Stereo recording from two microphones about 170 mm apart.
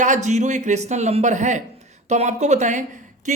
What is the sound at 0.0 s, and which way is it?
Speech, 45° right (ahead or behind).